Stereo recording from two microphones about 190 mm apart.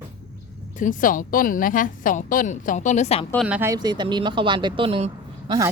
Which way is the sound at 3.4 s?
10° right (ahead or behind).